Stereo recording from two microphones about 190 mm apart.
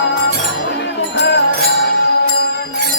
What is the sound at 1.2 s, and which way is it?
Music, 65° left (ahead or behind).